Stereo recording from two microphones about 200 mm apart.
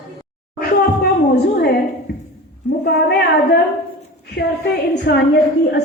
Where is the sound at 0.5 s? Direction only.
55° left (ahead or behind).